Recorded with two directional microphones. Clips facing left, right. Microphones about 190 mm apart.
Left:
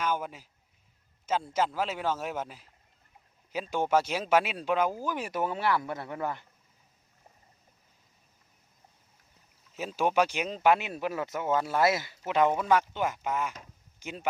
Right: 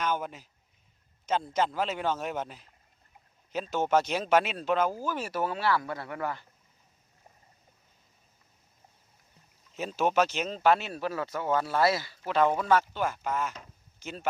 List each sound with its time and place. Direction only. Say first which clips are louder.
0.0 s speech: even; 5° left (ahead or behind)
9.7 s speech: even; 10° left (ahead or behind)